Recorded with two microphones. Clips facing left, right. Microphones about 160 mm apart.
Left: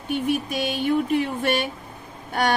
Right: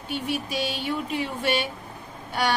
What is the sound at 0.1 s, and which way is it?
A woman's voice, 50° left (ahead or behind).